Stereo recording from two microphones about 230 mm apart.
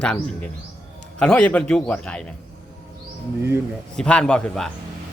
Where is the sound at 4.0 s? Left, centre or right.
Centre.